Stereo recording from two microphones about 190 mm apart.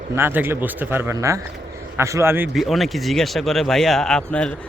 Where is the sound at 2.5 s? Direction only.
Centre (ahead or behind).